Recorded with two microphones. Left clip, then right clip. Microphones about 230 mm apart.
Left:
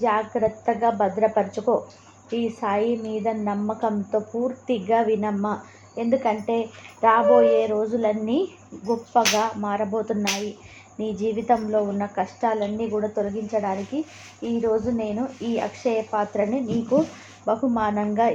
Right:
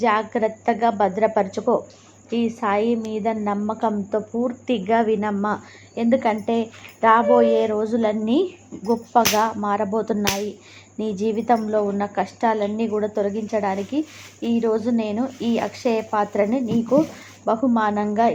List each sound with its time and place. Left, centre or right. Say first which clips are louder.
0.0 s a woman's voice: right 2 dB; right